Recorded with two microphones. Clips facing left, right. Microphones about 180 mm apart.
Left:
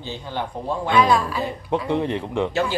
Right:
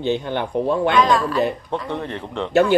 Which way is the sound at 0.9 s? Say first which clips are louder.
Left 3 dB; 10° left (ahead or behind).